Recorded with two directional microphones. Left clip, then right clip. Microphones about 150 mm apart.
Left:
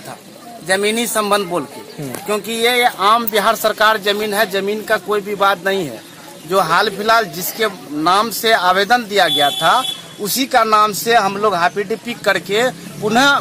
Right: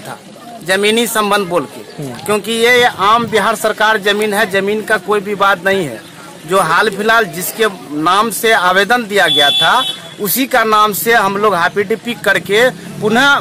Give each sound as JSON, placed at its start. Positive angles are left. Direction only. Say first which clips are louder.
{"t": 0.7, "sound": "speech", "louder": "right 4 dB", "side_deg": -5}
{"t": 10.2, "sound": "speech", "louder": "right 3 dB", "side_deg": -45}
{"t": 10.9, "sound": "speech", "louder": "right 3 dB", "side_deg": -15}
{"t": 12.5, "sound": "speech", "louder": "right 5 dB", "side_deg": 0}